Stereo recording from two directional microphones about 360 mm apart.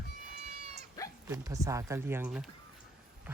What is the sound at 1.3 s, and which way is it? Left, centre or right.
Speech, centre.